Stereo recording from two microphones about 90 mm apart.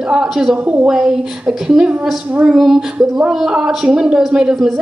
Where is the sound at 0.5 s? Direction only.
20° right (ahead or behind).